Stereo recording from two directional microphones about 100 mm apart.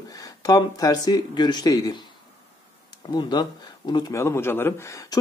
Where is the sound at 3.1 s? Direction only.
45° left (ahead or behind).